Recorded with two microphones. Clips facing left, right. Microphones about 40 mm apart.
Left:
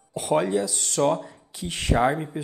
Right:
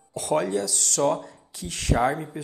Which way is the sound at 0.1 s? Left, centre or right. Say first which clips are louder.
Left 2 dB; left.